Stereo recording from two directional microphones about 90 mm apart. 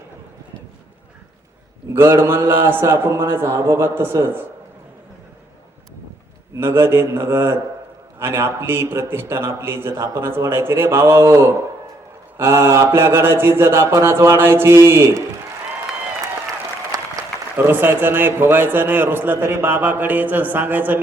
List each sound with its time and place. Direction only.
1.9 s a man's voice: 30° right (ahead or behind)
6.6 s a man's voice: 30° right (ahead or behind)
16.9 s applause: 45° right (ahead or behind)
17.6 s a man's voice: 25° right (ahead or behind)